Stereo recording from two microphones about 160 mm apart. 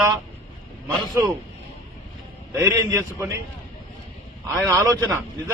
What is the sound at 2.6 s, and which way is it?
Speech, 15° right (ahead or behind).